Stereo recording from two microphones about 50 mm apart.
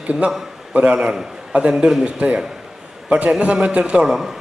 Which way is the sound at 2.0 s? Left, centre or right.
Right.